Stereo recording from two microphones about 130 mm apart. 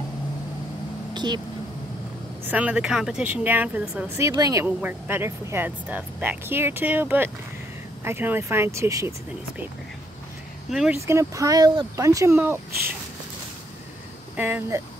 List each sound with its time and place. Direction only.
1.1 s a sound: 35° right (ahead or behind)
2.4 s speech: 10° right (ahead or behind)
4.2 s speech: 25° right (ahead or behind)
4.6 s speech: 15° right (ahead or behind)
10.9 s speech: 20° right (ahead or behind)
14.3 s speech: 15° right (ahead or behind)